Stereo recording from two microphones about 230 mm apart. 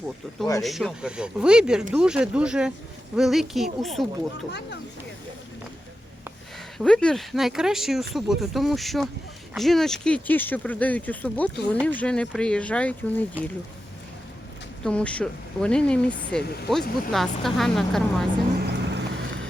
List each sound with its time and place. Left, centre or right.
0.6 s speech: centre
6.7 s speech: centre
14.8 s speech: centre
18.6 s vehicle: right